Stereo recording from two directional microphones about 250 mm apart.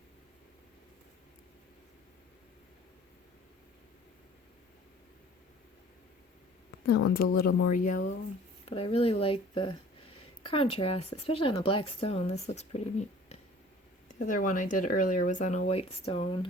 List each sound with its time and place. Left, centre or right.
6.9 s speech: left